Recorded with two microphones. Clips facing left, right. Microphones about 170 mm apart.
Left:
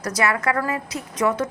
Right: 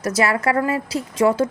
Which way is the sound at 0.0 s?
25° right (ahead or behind).